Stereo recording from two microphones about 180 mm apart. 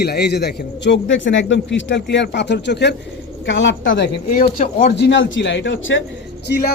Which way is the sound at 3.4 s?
90° left.